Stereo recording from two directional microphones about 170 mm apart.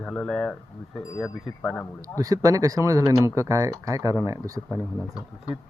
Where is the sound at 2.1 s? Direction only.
20° right (ahead or behind).